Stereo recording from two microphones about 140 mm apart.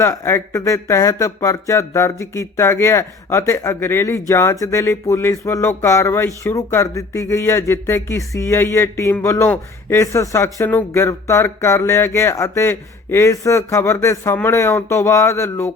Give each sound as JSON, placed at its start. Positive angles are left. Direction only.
{"t": 0.0, "sound": "speech", "side_deg": 20}